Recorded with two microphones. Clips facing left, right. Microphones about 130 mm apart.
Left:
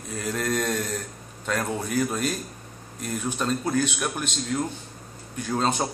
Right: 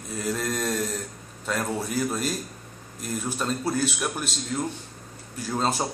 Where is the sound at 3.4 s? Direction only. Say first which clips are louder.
Left 2 dB; 5° right (ahead or behind).